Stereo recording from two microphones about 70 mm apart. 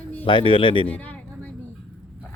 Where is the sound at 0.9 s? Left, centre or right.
Left.